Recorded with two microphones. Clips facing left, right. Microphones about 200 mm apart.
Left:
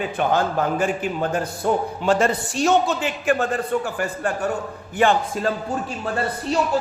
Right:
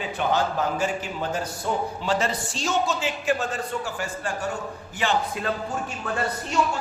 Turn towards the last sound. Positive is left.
turn(degrees=35)  # may be behind; listen again after turning